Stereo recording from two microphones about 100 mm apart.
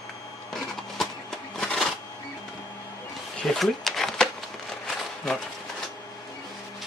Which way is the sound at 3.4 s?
Centre (ahead or behind).